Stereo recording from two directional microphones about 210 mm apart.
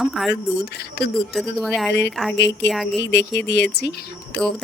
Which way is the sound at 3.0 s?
55° left (ahead or behind).